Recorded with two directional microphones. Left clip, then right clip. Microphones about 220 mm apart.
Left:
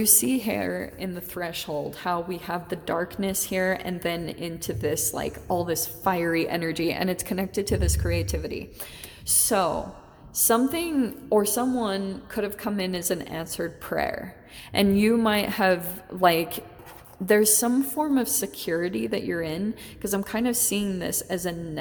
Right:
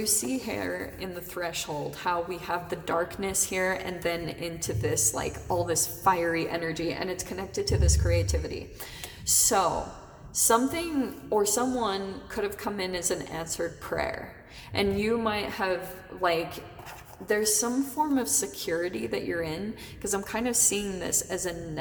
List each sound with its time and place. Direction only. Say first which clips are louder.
0.0 s a woman's voice: left 5 dB; 40° left (ahead or behind)